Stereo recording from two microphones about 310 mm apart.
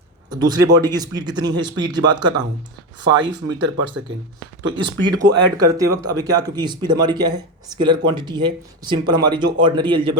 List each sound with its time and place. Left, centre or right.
0.3 s speech: centre
3.0 s speech: right
4.7 s speech: centre